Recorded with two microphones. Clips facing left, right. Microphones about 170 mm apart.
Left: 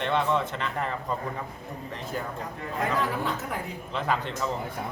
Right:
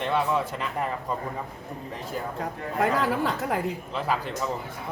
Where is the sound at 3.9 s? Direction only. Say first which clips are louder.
Left 2 dB; 5° right (ahead or behind).